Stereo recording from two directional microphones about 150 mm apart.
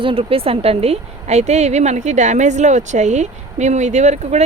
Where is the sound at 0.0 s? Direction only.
35° right (ahead or behind).